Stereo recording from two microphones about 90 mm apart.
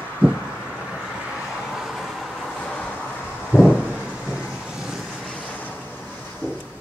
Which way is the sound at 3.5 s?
20° right (ahead or behind).